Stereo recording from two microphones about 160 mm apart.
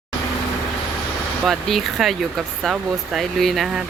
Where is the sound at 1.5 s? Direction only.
Centre (ahead or behind).